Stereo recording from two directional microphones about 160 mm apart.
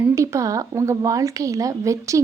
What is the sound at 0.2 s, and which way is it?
A woman's voice, 20° right (ahead or behind).